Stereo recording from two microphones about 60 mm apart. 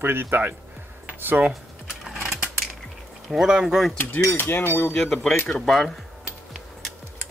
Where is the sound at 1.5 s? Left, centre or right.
Centre.